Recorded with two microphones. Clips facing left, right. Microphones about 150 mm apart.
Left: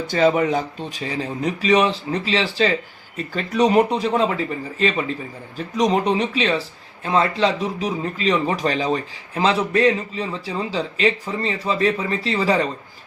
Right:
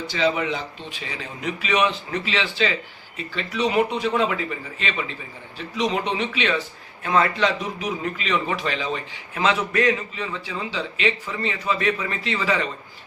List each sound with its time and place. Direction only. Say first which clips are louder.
0.1 s speech: left 6 dB; 45° left (ahead or behind)